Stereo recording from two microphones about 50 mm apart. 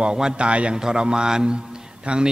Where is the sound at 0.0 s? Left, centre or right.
Centre.